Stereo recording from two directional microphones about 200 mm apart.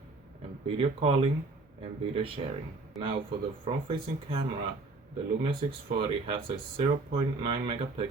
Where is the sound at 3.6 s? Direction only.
30° right (ahead or behind).